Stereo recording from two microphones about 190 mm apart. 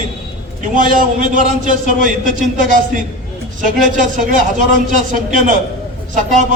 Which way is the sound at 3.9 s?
45° right (ahead or behind).